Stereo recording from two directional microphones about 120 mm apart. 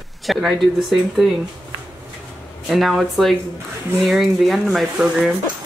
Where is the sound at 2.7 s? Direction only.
Centre (ahead or behind).